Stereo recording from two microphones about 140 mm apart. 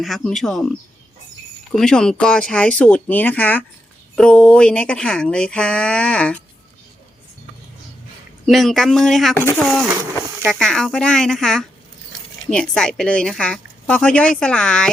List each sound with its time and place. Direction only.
0.0 s speech: centre (ahead or behind)
1.7 s speech: 5° left (ahead or behind)
8.4 s speech: centre (ahead or behind)
9.3 s speech: 15° left (ahead or behind)
10.4 s speech: centre (ahead or behind)